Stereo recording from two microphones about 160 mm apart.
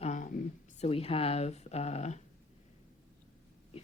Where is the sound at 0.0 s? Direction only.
50° left (ahead or behind).